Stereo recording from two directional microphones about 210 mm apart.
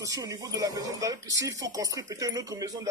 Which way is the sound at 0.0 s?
15° right (ahead or behind).